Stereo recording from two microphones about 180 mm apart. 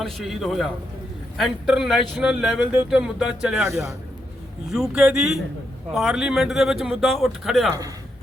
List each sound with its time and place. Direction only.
0.0 s speech: centre (ahead or behind)